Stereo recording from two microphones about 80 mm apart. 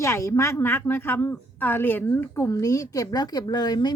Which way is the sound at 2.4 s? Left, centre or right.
Left.